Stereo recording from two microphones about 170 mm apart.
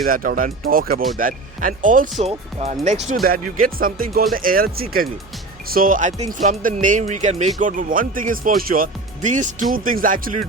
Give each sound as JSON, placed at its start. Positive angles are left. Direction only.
{"t": 0.0, "sound": "speech", "side_deg": -55}
{"t": 2.1, "sound": "speech", "side_deg": -35}
{"t": 3.2, "sound": "speech", "side_deg": -55}